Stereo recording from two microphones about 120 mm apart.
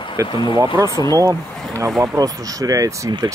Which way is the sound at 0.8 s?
30° left (ahead or behind).